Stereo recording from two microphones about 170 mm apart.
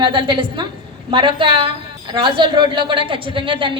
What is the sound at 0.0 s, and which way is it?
A woman's voice, 30° right (ahead or behind).